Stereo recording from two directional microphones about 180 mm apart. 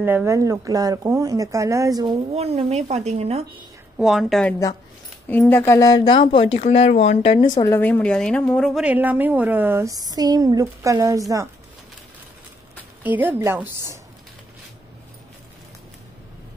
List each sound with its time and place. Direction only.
0.0 s speech: 10° right (ahead or behind)
2.3 s speech: 35° right (ahead or behind)
4.0 s a woman's voice: centre (ahead or behind); by 7.4 s 30° left (ahead or behind)
7.7 s speech: 10° left (ahead or behind); by 11.4 s 20° right (ahead or behind)
13.0 s speech: 10° right (ahead or behind)